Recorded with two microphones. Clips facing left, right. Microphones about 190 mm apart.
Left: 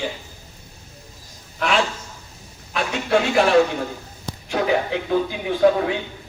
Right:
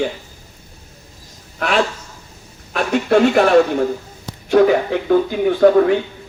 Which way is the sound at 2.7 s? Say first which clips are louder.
Right 5 dB; 50° right (ahead or behind).